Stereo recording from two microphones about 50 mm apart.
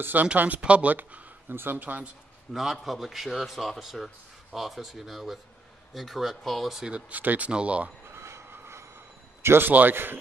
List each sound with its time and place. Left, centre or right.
0.0 s speech: right
0.6 s speech: right
1.5 s speech: right
2.5 s a man's voice: centre
6.9 s speech: right
8.1 s train: right
9.4 s a man's voice: right